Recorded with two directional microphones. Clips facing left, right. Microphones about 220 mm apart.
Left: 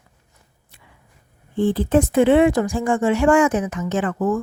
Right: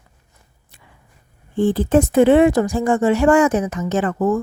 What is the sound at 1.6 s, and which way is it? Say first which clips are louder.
Speech: right 2 dB; 45° right (ahead or behind).